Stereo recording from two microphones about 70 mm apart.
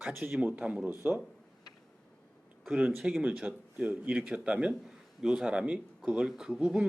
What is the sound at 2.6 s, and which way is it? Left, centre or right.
Speech, centre.